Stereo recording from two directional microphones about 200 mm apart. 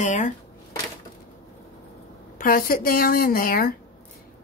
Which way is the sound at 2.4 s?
45° left (ahead or behind).